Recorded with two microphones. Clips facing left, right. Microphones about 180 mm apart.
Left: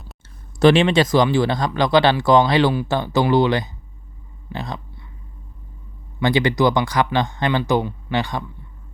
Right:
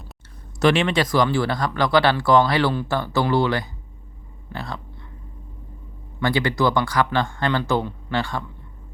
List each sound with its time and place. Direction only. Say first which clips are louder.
0.6 s speech: left 5 dB; 30° left (ahead or behind)
6.2 s speech: left 3 dB; 20° left (ahead or behind)